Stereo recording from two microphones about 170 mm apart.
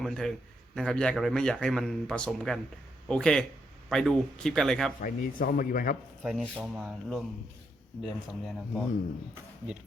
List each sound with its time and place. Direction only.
0.0 s speech: 5° left (ahead or behind)
5.0 s speech: 55° left (ahead or behind)
6.2 s speech: centre (ahead or behind)